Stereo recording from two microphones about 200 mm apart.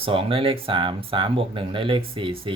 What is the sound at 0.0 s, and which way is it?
Speech, 25° right (ahead or behind).